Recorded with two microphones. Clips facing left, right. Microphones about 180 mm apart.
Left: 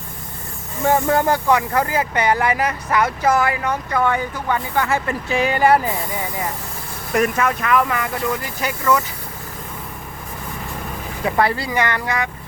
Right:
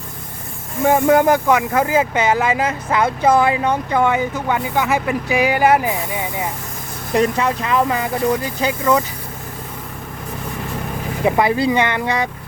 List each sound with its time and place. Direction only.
0.8 s speech: 10° right (ahead or behind)
7.1 s speech: 30° right (ahead or behind)
11.2 s speech: 20° right (ahead or behind)